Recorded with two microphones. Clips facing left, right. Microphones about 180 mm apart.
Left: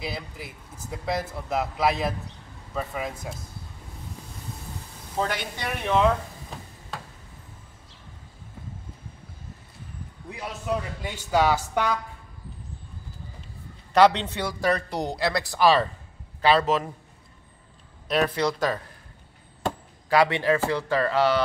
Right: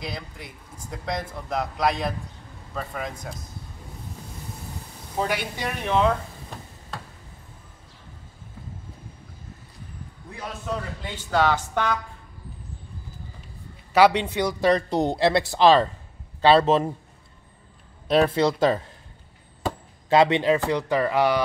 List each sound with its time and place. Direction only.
0.0 s a man's voice: 5° left (ahead or behind)
5.1 s speech: 10° right (ahead or behind)
5.6 s a sound: centre (ahead or behind)
10.3 s a man's voice: 10° left (ahead or behind)
13.9 s speech: 10° right (ahead or behind)
14.7 s a man's voice: 20° right (ahead or behind)
18.0 s speech: 30° right (ahead or behind)
20.1 s speech: 20° right (ahead or behind)